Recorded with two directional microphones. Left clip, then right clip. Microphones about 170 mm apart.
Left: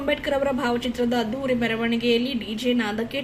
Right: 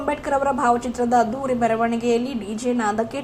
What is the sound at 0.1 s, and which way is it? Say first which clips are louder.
A woman's voice: right 2 dB; 20° left (ahead or behind).